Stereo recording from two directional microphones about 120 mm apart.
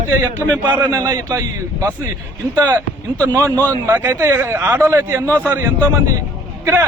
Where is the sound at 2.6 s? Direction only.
15° right (ahead or behind).